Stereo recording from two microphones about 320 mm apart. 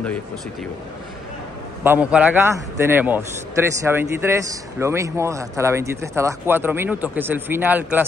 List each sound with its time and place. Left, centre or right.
1.8 s a man's voice: centre